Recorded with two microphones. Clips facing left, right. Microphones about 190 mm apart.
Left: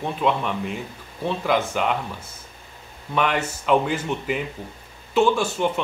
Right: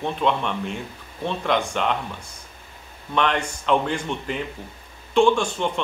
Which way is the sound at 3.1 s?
5° left (ahead or behind).